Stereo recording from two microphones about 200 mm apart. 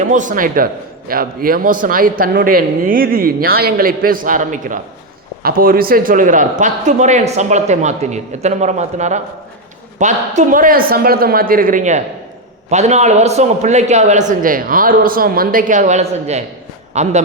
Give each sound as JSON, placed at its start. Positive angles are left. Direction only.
{"t": 0.1, "sound": "a man's voice", "side_deg": -40}